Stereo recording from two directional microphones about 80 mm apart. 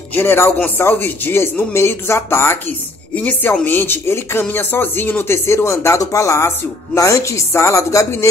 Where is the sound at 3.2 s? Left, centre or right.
Centre.